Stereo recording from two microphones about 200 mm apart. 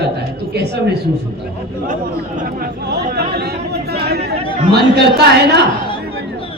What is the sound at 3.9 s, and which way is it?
Chatter, 55° right (ahead or behind).